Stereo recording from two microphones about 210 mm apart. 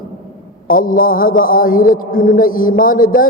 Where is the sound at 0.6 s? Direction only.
40° left (ahead or behind).